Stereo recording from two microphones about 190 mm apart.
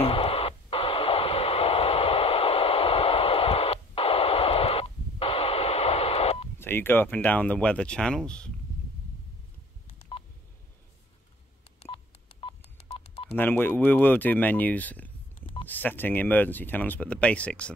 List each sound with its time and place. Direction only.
0.0 s radio: 30° left (ahead or behind)
6.6 s speech: 10° left (ahead or behind)
10.1 s telephone dialing: 30° left (ahead or behind)
11.8 s telephone dialing: 30° left (ahead or behind)
13.3 s speech: 10° left (ahead or behind)